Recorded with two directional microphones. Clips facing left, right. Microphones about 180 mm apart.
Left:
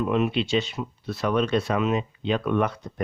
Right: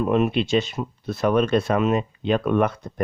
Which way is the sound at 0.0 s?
45° right (ahead or behind).